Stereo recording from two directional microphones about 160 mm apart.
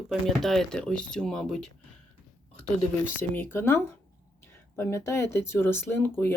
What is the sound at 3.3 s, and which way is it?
Speech, 15° left (ahead or behind).